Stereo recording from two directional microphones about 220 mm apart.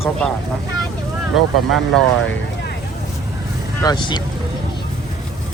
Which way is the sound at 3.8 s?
20° left (ahead or behind).